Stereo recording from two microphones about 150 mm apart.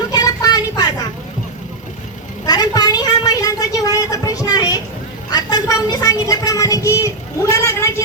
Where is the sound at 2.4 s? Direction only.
25° left (ahead or behind).